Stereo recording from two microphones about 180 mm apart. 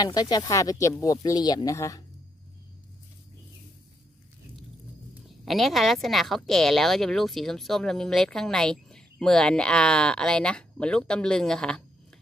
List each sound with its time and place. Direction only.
0.0 s speech: 20° left (ahead or behind)
5.4 s speech: centre (ahead or behind)